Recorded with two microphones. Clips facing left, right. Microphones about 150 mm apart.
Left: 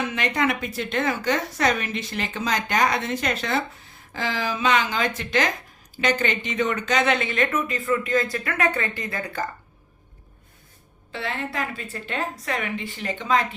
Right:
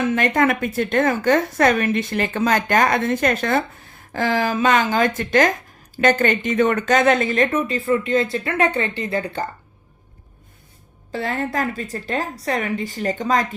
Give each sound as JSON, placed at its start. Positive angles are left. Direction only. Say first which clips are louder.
{"t": 0.0, "sound": "a woman's voice", "louder": "right 6 dB", "side_deg": -50}
{"t": 11.1, "sound": "speech", "louder": "right 6 dB", "side_deg": -40}